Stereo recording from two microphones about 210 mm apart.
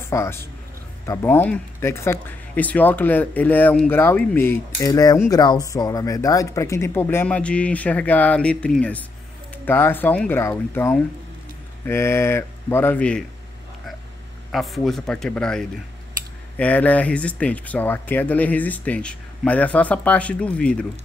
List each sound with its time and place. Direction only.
0.0 s a man's voice: 10° left (ahead or behind)
14.5 s speech: centre (ahead or behind)